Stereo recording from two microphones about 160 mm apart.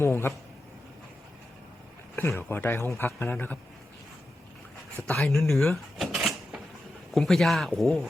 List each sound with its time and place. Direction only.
0.0 s speech: 15° left (ahead or behind)
2.3 s speech: 10° left (ahead or behind)
5.0 s speech: 5° left (ahead or behind)
5.5 s a sound: centre (ahead or behind)
7.1 s speech: 5° left (ahead or behind)